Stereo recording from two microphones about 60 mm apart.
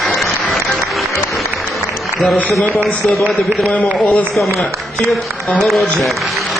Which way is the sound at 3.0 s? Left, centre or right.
Centre.